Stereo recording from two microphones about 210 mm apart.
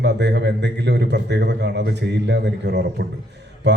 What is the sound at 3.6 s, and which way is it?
Mantra, 55° right (ahead or behind).